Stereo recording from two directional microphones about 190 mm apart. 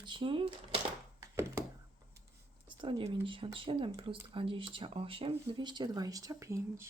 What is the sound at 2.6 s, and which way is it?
Speech, 25° right (ahead or behind).